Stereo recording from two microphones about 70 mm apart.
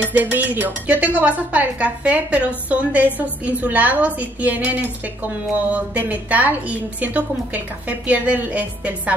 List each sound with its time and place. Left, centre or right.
0.1 s speech: right